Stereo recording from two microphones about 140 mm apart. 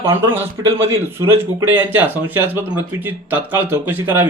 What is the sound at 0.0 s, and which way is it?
Speech, 15° right (ahead or behind).